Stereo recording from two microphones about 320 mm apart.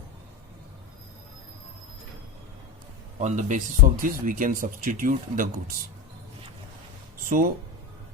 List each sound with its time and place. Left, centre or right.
3.2 s speech: right
7.3 s speech: right